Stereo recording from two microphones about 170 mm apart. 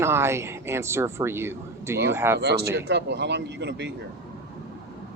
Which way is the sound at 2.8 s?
90° right.